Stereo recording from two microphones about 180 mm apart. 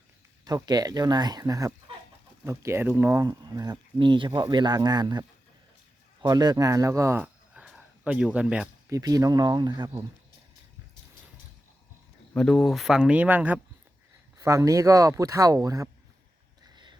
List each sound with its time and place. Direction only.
0.4 s speech: 20° right (ahead or behind)
6.2 s speech: 20° right (ahead or behind)
8.9 s speech: 20° right (ahead or behind)
12.3 s speech: 5° left (ahead or behind); by 15.9 s 20° right (ahead or behind)